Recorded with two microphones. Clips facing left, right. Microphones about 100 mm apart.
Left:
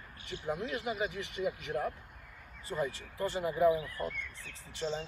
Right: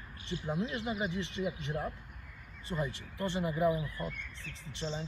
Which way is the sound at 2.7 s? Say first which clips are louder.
Left 2 dB; 25° left (ahead or behind).